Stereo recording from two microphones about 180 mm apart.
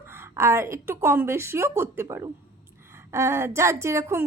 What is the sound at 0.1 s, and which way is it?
Speech, 15° right (ahead or behind).